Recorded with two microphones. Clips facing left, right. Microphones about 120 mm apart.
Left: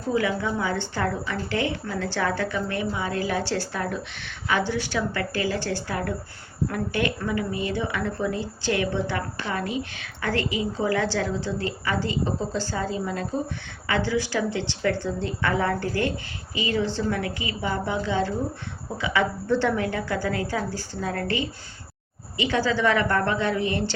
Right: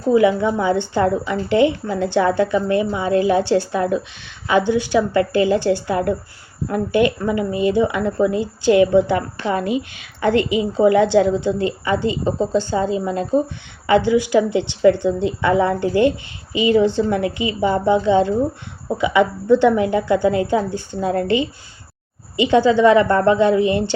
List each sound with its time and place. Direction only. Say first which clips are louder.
0.1 s a woman's voice: right 10 dB; 20° right (ahead or behind)